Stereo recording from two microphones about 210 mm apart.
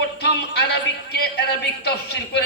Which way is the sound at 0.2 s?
50° left (ahead or behind).